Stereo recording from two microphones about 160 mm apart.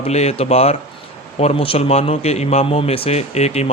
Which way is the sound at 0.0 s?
40° left (ahead or behind).